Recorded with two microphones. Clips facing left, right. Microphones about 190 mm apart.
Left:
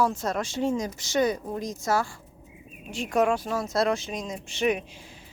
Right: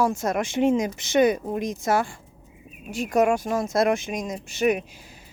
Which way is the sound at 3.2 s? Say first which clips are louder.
Right 3 dB; 45° right (ahead or behind).